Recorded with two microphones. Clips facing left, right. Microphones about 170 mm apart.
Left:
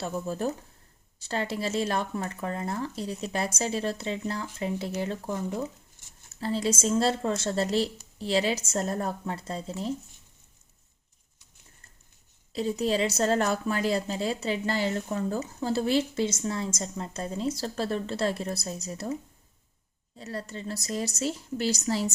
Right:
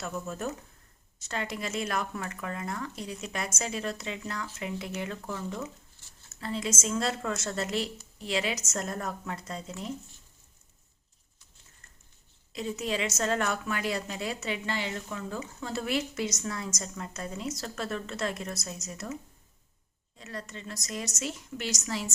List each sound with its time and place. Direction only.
0.0 s a woman's voice: 30° left (ahead or behind)
6.4 s a woman's voice: 30° left (ahead or behind)
12.5 s a woman's voice: 35° left (ahead or behind)
20.1 s a woman's voice: 35° left (ahead or behind)